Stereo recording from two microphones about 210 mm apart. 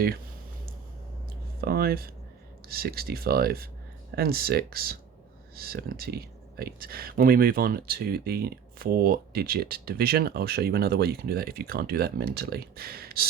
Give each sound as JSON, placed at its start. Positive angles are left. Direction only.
{"t": 1.6, "sound": "speech", "side_deg": -45}